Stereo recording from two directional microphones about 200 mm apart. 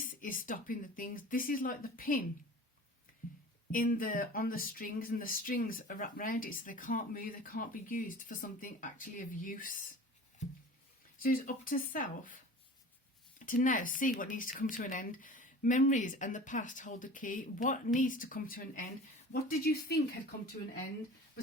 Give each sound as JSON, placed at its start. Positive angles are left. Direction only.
{"t": 0.2, "sound": "speech", "side_deg": 45}
{"t": 3.7, "sound": "speech", "side_deg": 45}
{"t": 11.2, "sound": "speech", "side_deg": 45}
{"t": 13.4, "sound": "speech", "side_deg": 40}